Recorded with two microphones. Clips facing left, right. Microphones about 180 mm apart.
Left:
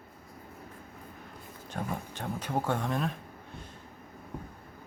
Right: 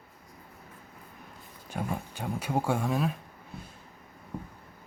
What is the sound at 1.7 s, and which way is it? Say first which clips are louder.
Speech: right 2 dB; 10° right (ahead or behind).